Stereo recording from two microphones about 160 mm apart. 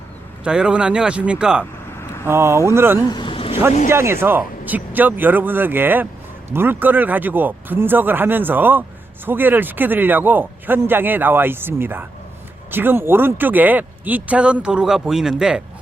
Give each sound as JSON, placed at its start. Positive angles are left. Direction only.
{"t": 0.4, "sound": "speech", "side_deg": -5}
{"t": 3.1, "sound": "a sound", "side_deg": 30}
{"t": 3.8, "sound": "speech", "side_deg": -15}